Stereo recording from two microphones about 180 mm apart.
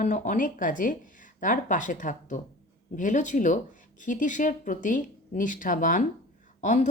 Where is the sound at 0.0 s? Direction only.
45° left (ahead or behind).